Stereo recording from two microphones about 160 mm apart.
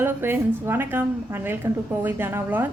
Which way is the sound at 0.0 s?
15° right (ahead or behind).